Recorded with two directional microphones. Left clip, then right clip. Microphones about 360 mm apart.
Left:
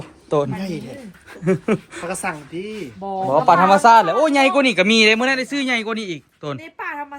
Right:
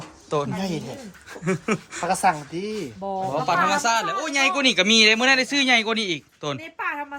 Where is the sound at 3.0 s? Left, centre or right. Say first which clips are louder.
Left 9 dB; centre.